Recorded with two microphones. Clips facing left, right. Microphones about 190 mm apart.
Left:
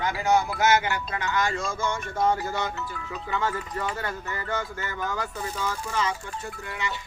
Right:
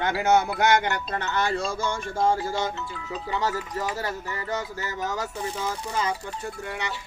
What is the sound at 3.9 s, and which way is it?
Speech, 35° right (ahead or behind).